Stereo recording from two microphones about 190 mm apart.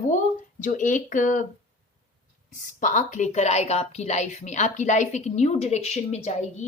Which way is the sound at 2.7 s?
40° left (ahead or behind).